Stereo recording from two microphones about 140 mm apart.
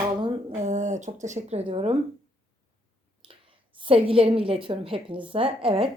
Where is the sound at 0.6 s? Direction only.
60° right (ahead or behind); by 1.9 s 45° right (ahead or behind).